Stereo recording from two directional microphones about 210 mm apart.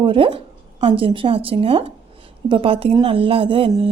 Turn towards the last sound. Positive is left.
turn(degrees=-25)  # may be behind; listen again after turning